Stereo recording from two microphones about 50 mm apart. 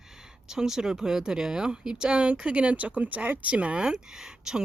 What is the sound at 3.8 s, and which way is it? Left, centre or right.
Speech, centre.